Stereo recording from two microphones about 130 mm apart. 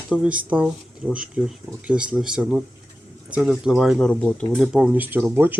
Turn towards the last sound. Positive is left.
turn(degrees=-15)  # may be behind; listen again after turning